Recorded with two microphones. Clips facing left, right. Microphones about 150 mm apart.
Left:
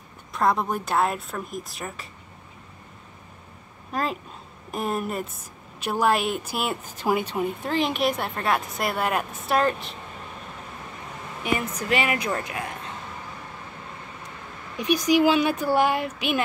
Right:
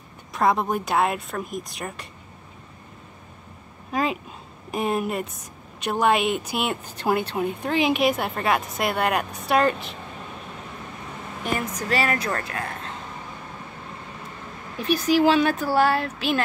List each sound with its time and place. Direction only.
0.3 s a woman's voice: centre (ahead or behind)
3.9 s a sound: centre (ahead or behind)
4.6 s a woman's voice: centre (ahead or behind)
11.9 s speech: 15° left (ahead or behind)
14.8 s speech: 15° left (ahead or behind)